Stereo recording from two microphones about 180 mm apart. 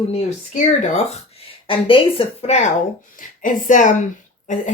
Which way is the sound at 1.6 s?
30° left (ahead or behind).